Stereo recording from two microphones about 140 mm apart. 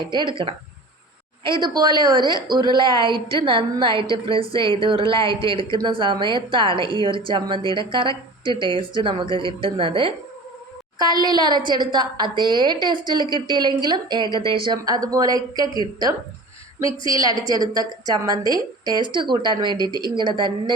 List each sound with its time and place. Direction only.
0.0 s a woman's voice: 35° right (ahead or behind)
1.6 s a woman's voice: 30° right (ahead or behind)
17.1 s a woman's voice: 25° right (ahead or behind)
18.4 s a woman's voice: 30° left (ahead or behind)
18.9 s a woman's voice: 35° right (ahead or behind)